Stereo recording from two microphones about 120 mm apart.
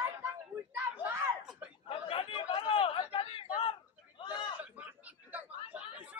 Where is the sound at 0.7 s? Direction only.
15° right (ahead or behind).